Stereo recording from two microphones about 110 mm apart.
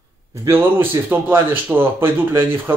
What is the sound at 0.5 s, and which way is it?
Speech, 20° right (ahead or behind).